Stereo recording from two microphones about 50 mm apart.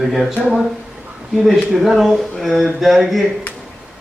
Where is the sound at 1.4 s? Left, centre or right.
Centre.